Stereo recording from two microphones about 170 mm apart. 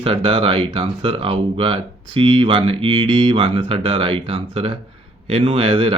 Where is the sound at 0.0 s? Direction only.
30° right (ahead or behind).